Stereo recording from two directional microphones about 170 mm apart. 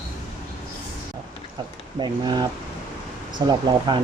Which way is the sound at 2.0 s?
25° right (ahead or behind).